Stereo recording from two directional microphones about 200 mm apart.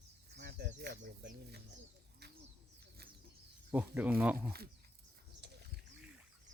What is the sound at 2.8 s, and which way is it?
Bird, 50° right (ahead or behind).